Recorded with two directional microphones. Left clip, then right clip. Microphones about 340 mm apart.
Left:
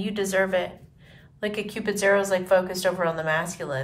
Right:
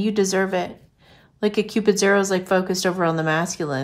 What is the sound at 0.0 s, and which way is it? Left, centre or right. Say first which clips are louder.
Speech: right 3 dB; centre.